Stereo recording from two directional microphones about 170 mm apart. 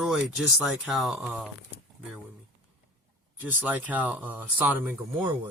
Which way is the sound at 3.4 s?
10° right (ahead or behind).